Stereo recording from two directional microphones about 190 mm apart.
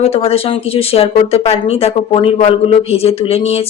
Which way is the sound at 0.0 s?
30° left (ahead or behind).